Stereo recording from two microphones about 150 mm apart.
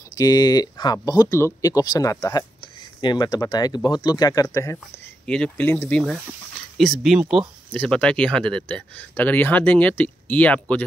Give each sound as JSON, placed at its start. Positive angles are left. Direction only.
{"t": 0.1, "sound": "speech", "side_deg": 25}
{"t": 5.2, "sound": "speech", "side_deg": 5}